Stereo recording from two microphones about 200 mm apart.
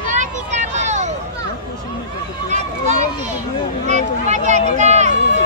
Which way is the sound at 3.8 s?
35° right (ahead or behind).